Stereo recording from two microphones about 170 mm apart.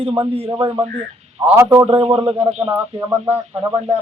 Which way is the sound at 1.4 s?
15° right (ahead or behind).